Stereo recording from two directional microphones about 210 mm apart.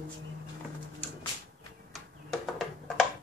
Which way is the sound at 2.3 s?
Centre (ahead or behind).